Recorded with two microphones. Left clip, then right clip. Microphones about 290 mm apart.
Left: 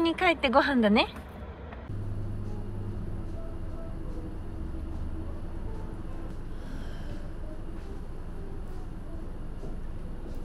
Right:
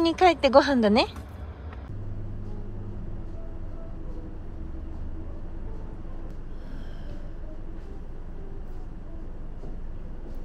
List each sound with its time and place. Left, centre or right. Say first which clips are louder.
0.0 s speech: right 5 dB; centre